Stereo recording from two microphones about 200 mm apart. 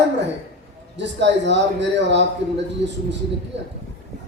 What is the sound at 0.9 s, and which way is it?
A man's voice, 60° right (ahead or behind).